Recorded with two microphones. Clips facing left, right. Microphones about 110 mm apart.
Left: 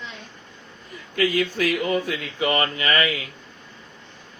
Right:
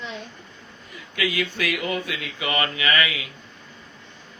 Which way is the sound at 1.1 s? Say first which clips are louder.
Left 4 dB; 40° left (ahead or behind).